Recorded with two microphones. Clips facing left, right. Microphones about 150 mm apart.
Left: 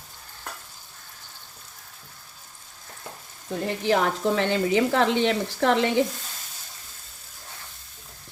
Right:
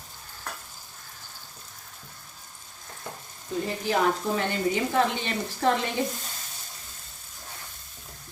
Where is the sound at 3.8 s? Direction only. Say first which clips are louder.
Left 3 dB; 90° left.